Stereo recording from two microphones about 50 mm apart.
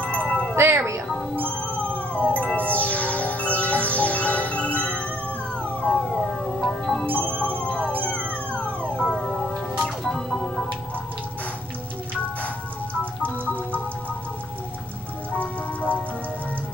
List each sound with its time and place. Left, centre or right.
0.0 s chime: left
0.6 s music: right
1.4 s music: left
6.1 s music: centre
7.1 s music: left
10.0 s music: centre
15.3 s music: left